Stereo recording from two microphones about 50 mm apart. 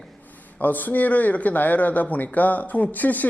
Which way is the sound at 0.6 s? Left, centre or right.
Left.